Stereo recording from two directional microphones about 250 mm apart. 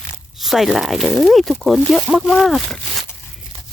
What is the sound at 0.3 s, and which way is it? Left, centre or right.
Speech, centre.